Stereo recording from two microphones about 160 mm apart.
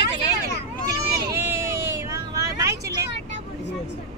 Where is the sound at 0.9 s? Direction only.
20° right (ahead or behind).